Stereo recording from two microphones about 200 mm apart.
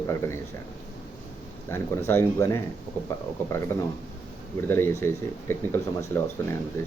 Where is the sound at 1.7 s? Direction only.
10° left (ahead or behind).